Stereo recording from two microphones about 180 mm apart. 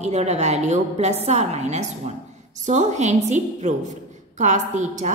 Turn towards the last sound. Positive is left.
turn(degrees=-40)  # may be behind; listen again after turning